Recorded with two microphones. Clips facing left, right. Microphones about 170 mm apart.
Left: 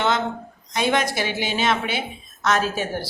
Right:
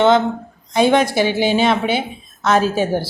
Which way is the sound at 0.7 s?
30° right (ahead or behind).